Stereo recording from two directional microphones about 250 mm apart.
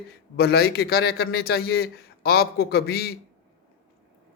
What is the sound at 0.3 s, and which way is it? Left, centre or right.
A man's voice, left.